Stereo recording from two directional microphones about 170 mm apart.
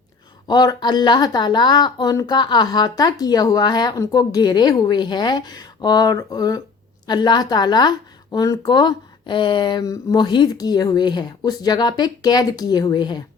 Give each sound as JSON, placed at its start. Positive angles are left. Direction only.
{"t": 0.4, "sound": "speech", "side_deg": 25}